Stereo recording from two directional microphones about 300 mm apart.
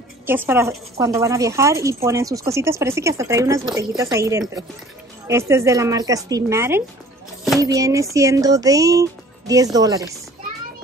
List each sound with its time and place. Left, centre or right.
0.3 s speech: centre